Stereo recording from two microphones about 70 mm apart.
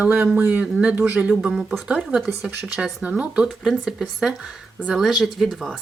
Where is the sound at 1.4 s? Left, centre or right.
Centre.